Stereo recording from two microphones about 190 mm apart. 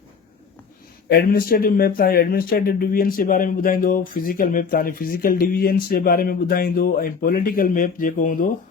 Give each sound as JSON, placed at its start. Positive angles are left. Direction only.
{"t": 1.0, "sound": "speech", "side_deg": 55}